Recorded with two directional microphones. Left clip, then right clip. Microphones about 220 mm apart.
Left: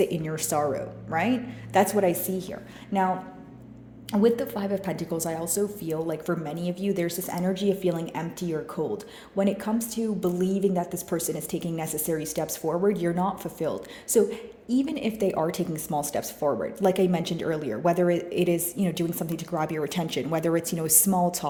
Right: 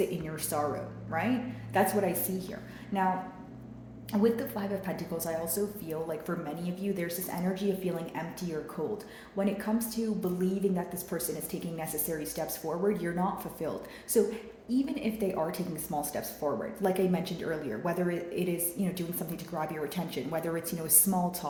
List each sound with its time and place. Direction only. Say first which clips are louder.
0.0 s a woman's voice: left 6 dB; 50° left (ahead or behind)
4.1 s a woman's voice: left 6 dB; 50° left (ahead or behind)